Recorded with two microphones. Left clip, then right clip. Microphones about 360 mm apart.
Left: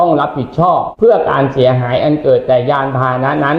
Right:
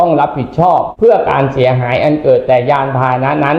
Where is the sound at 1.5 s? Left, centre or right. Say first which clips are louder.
Even; centre.